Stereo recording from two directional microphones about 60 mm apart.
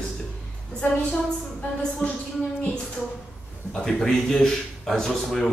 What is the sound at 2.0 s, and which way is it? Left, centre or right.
Speech, left.